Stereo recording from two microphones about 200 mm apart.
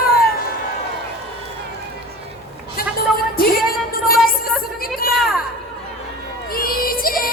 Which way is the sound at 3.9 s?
45° left (ahead or behind).